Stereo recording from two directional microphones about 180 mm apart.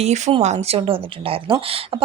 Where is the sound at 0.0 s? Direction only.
35° right (ahead or behind).